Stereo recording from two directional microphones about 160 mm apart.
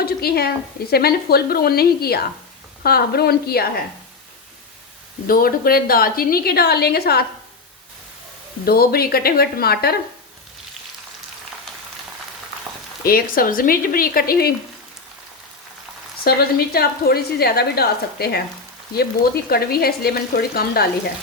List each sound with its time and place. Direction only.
0.0 s a woman's voice: 75° left (ahead or behind)
5.3 s a woman's voice: 65° left (ahead or behind); by 7.3 s 80° left
8.6 s a woman's voice: 70° left (ahead or behind)
13.1 s speech: 65° left (ahead or behind)
16.2 s a woman's voice: 75° left (ahead or behind)
19.5 s a woman's voice: 70° left (ahead or behind)